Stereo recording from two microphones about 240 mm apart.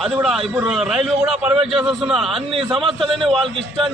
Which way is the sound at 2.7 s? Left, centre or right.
Right.